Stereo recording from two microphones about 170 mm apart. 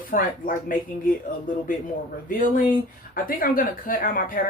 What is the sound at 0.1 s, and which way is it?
Speech, 55° left (ahead or behind).